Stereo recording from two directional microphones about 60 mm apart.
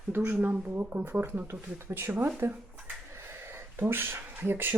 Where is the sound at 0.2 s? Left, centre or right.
Right.